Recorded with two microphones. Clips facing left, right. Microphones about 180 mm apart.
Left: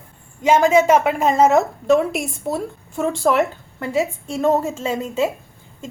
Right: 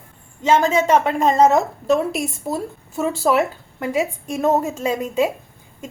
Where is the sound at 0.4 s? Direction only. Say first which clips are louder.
Left 3 dB; 10° left (ahead or behind).